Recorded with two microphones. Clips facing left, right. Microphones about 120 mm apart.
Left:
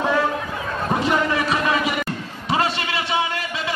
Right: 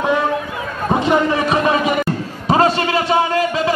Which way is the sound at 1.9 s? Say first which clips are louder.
Right 7 dB; 45° right (ahead or behind).